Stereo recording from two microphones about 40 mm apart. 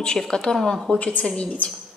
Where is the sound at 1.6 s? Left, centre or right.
Left.